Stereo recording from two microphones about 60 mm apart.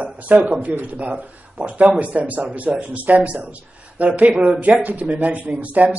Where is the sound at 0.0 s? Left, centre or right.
Right.